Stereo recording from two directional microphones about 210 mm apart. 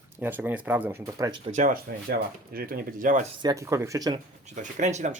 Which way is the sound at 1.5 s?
40° right (ahead or behind).